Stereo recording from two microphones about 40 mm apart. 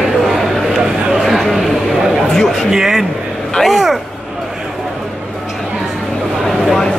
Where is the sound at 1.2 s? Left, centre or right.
Centre.